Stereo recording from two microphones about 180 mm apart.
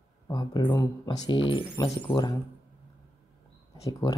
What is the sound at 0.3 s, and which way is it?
Speech, 25° left (ahead or behind).